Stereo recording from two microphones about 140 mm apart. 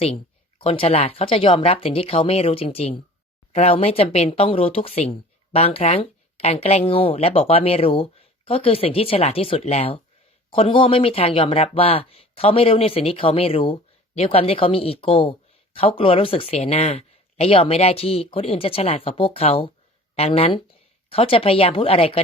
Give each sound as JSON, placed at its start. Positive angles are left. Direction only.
{"t": 0.6, "sound": "speech", "side_deg": 45}